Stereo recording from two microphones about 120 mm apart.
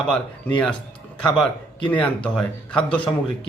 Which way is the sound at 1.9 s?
10° left (ahead or behind).